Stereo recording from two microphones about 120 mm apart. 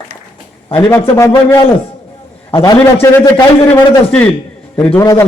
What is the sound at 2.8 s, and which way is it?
Speech, 15° left (ahead or behind).